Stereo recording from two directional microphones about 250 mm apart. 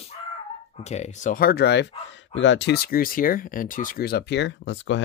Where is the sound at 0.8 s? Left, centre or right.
Left.